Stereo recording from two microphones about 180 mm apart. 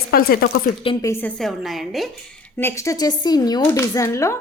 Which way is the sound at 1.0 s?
10° left (ahead or behind).